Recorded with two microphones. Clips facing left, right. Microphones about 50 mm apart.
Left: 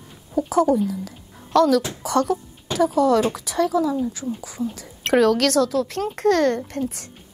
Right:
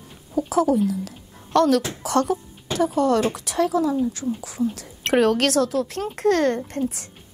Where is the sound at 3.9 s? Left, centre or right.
Centre.